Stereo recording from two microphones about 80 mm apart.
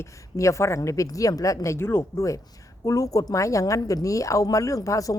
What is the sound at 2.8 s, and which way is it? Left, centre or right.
A woman's voice, left.